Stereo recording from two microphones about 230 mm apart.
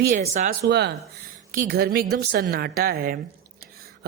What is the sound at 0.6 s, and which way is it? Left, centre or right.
A man's voice, right.